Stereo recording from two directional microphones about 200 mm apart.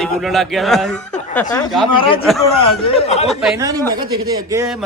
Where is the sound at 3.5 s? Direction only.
15° right (ahead or behind).